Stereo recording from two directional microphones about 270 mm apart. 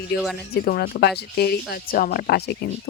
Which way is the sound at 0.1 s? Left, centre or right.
Left.